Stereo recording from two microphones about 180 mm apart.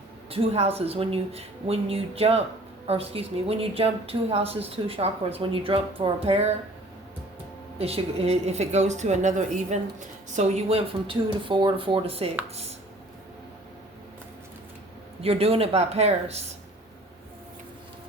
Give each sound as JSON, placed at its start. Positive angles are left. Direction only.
{"t": 0.3, "sound": "speech", "side_deg": -35}
{"t": 7.8, "sound": "speech", "side_deg": -35}
{"t": 15.2, "sound": "speech", "side_deg": -35}